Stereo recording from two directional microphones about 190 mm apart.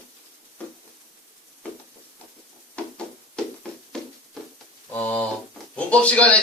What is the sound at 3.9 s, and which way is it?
Hands, 5° left (ahead or behind).